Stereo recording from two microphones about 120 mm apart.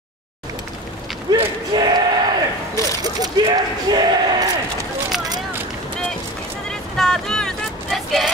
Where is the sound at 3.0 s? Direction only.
30° right (ahead or behind).